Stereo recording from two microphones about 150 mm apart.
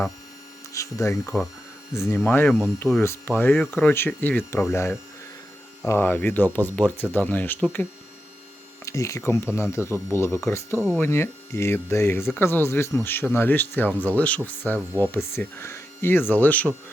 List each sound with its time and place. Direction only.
0.7 s speech: 20° left (ahead or behind)